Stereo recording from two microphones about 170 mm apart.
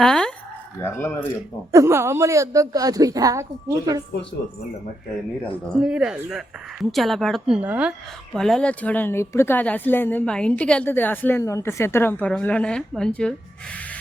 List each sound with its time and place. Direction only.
0.0 s speech: 5° left (ahead or behind)
0.8 s speech: 15° left (ahead or behind)
1.7 s a woman's voice: 15° right (ahead or behind)
4.1 s a woman's voice: 85° left
5.4 s speech: 5° left (ahead or behind)
8.4 s speech: 5° left (ahead or behind)